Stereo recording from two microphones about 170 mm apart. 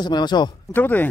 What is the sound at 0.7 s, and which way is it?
Speech, 10° left (ahead or behind).